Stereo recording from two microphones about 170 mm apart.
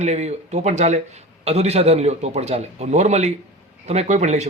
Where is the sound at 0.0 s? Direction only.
40° right (ahead or behind).